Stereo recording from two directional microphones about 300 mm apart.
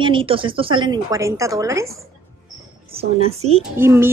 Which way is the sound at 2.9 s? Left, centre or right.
Centre.